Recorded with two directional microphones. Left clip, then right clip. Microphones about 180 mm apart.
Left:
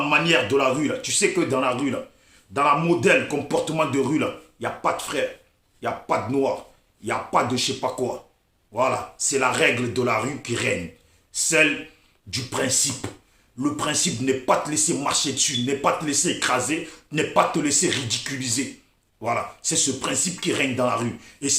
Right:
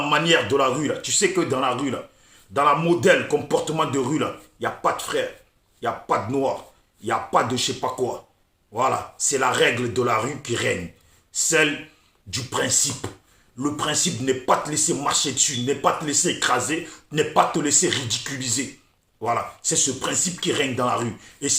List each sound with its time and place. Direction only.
0.1 s speech: 10° left (ahead or behind)